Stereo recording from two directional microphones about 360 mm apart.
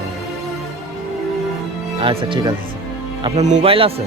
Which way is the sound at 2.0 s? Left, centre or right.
Centre.